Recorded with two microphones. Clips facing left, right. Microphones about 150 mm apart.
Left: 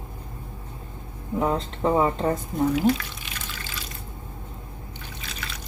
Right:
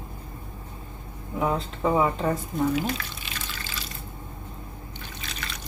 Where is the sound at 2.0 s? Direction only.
25° left (ahead or behind).